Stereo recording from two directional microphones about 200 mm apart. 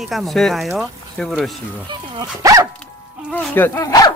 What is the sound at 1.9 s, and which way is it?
Speech, 20° right (ahead or behind).